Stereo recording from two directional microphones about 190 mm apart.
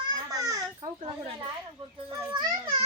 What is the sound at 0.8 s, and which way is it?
Children playing, 30° right (ahead or behind).